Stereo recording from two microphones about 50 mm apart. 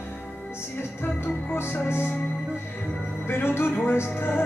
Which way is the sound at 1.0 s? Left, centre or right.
Left.